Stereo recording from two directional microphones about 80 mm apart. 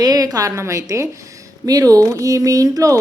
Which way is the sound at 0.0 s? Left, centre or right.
Right.